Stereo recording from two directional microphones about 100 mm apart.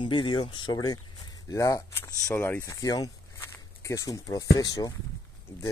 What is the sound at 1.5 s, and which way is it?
Speech, 30° left (ahead or behind).